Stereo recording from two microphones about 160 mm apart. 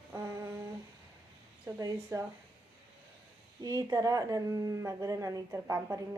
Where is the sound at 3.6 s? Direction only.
20° right (ahead or behind).